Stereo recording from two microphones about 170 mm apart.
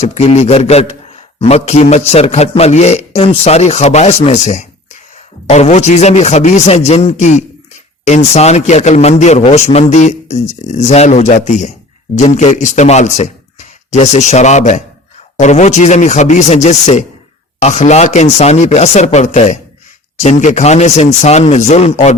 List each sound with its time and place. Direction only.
0.1 s a man's voice: 40° left (ahead or behind)